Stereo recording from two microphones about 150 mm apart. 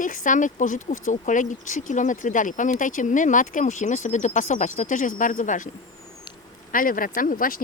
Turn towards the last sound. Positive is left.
turn(degrees=70)  # may be behind; listen again after turning